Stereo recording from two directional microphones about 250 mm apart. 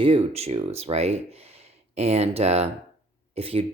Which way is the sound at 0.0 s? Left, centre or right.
Right.